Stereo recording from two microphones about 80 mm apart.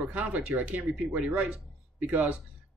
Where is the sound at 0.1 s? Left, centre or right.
Centre.